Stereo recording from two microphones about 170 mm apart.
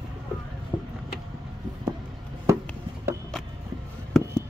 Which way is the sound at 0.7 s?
30° left (ahead or behind).